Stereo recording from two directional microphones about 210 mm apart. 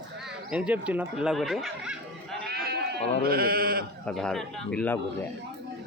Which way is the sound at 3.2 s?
45° right (ahead or behind).